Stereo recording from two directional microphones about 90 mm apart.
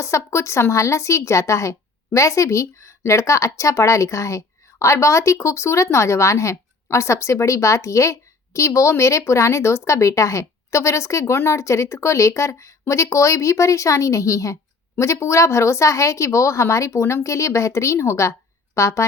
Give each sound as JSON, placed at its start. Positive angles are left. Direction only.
{"t": 0.0, "sound": "speech", "side_deg": 35}